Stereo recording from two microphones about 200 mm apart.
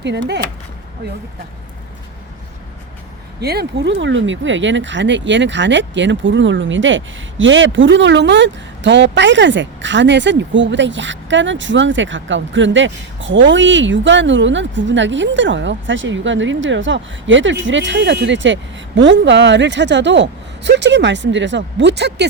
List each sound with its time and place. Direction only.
0.0 s speech: 60° right (ahead or behind)
3.4 s speech: 55° right (ahead or behind)